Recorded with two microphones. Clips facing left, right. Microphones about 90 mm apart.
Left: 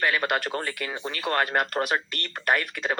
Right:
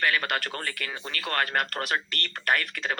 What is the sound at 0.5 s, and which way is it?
A man's voice, 15° left (ahead or behind).